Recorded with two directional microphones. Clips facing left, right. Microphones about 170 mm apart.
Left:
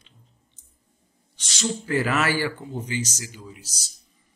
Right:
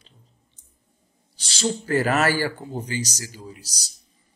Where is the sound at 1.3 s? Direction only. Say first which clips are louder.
Right 3 dB; 30° right (ahead or behind).